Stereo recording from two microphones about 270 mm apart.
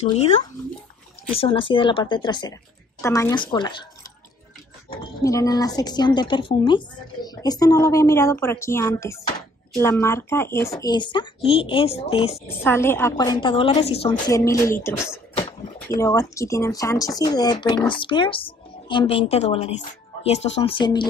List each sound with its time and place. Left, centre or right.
1.3 s speech: centre
5.2 s speech: centre
12.4 s speech: centre